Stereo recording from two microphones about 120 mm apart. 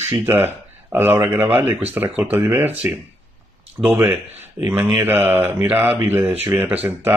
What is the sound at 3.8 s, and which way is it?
A man's voice, 10° right (ahead or behind).